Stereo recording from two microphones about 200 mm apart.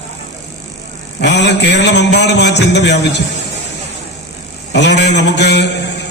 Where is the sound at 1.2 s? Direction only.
60° left (ahead or behind).